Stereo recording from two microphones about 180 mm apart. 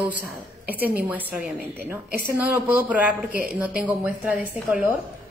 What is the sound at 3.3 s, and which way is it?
Speech, 55° right (ahead or behind).